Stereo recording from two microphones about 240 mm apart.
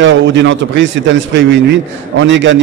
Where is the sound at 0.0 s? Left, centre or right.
Right.